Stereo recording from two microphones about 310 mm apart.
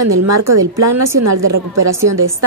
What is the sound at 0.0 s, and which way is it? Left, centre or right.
A woman's voice, right.